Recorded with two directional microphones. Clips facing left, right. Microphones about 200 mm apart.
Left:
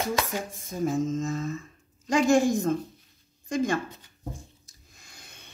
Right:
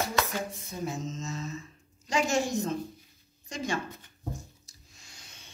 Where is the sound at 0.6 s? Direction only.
50° left (ahead or behind).